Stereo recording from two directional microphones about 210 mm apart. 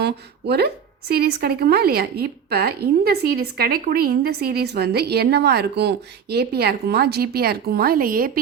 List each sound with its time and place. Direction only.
0.0 s a woman's voice: 50° right (ahead or behind)